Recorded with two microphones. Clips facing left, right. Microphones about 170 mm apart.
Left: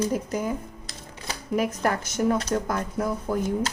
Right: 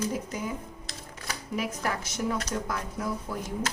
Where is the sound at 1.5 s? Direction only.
50° left (ahead or behind).